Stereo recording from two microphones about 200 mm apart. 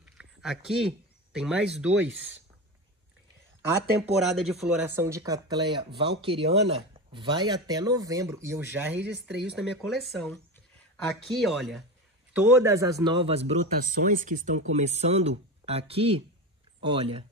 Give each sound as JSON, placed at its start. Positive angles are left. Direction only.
{"t": 0.0, "sound": "speech", "side_deg": -5}
{"t": 4.3, "sound": "speech", "side_deg": -5}
{"t": 12.4, "sound": "speech", "side_deg": -10}